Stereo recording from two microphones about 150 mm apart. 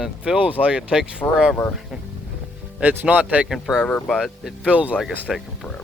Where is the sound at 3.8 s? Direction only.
10° left (ahead or behind); by 5.2 s 5° right (ahead or behind).